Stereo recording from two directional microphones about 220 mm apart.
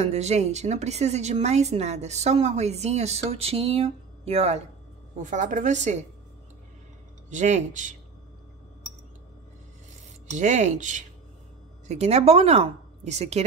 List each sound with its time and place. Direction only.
0.0 s a woman's voice: 30° right (ahead or behind)
7.2 s a woman's voice: 35° right (ahead or behind)
10.3 s a woman's voice: 35° right (ahead or behind)